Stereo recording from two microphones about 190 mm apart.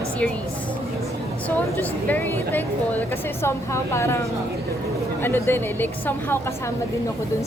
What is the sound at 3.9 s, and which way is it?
Speech, 15° left (ahead or behind).